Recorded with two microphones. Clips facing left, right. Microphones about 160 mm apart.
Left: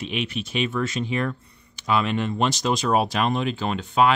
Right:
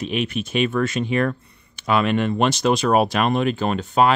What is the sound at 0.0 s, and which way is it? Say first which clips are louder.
Speech: right 4 dB; 45° right (ahead or behind).